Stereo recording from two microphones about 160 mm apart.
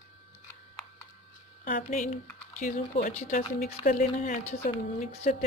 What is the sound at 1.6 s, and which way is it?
A woman's voice, 50° left (ahead or behind).